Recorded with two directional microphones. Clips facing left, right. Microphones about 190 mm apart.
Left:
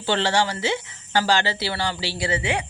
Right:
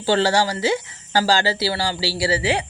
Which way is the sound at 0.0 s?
40° right (ahead or behind).